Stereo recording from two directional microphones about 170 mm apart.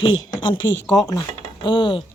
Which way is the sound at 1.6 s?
30° left (ahead or behind).